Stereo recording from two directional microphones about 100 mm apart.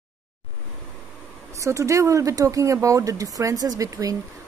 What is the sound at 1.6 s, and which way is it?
A woman's voice, 30° right (ahead or behind).